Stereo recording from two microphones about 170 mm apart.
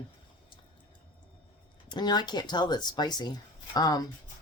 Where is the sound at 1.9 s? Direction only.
25° left (ahead or behind).